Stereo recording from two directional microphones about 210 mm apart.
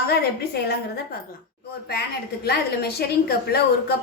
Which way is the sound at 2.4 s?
50° left (ahead or behind).